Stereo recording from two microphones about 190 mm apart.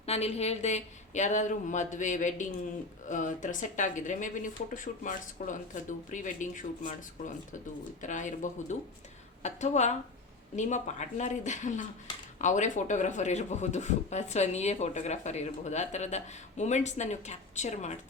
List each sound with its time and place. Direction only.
0.0 s speech: 30° left (ahead or behind)